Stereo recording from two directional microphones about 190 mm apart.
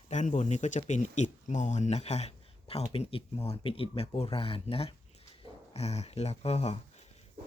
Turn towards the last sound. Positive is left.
turn(degrees=35)  # may be behind; listen again after turning